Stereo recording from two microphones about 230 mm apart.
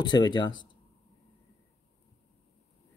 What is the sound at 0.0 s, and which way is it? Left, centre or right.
Speech, centre.